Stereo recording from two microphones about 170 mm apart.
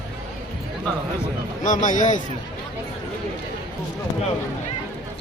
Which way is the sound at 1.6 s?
50° left (ahead or behind).